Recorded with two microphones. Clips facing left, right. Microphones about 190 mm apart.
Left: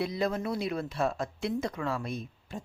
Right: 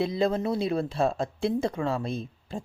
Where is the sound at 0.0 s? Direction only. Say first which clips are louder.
Right 5 dB; 25° right (ahead or behind).